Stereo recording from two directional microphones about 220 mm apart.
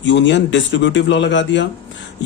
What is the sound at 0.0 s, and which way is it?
A man's voice, 55° left (ahead or behind).